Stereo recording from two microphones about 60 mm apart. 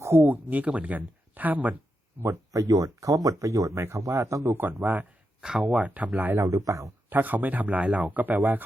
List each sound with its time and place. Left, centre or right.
0.1 s speech: right
0.5 s speech: right
2.5 s speech: right
3.8 s speech: right
4.5 s speech: right
5.4 s speech: centre
5.7 s speech: right
6.4 s speech: right
7.1 s speech: right